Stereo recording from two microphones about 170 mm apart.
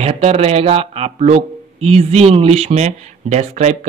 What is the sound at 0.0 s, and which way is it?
Speech, 40° right (ahead or behind).